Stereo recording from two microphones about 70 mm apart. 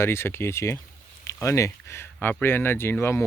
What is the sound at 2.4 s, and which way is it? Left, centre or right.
Speech, left.